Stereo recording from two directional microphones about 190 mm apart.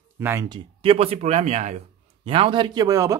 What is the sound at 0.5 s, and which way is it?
Speech, 30° right (ahead or behind).